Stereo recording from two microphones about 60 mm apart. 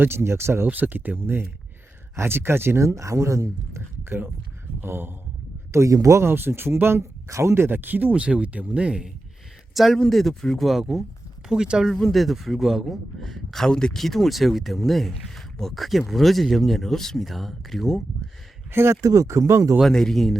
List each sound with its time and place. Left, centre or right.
0.0 s speech: right
0.7 s speech: right
4.8 s speech: right
5.7 s speech: right
6.2 s speech: right
7.5 s speech: right; by 9.0 s centre
9.7 s a man's voice: centre
10.7 s speech: centre
11.9 s a man's voice: centre
18.7 s speech: right
19.0 s speech: right
19.8 s a man's voice: centre